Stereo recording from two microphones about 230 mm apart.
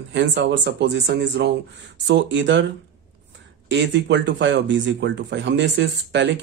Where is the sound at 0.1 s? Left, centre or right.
Right.